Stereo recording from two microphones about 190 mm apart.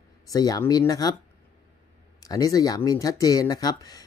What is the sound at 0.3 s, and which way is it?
Speech, 20° left (ahead or behind).